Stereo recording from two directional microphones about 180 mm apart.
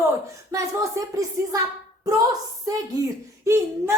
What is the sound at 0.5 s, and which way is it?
Speech, 20° right (ahead or behind).